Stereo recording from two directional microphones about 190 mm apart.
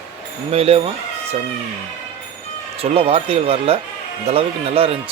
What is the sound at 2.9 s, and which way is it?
Speech, 30° right (ahead or behind).